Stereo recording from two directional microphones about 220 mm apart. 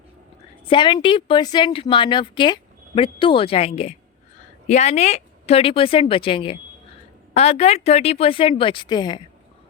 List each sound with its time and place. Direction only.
0.6 s a woman's voice: 20° left (ahead or behind)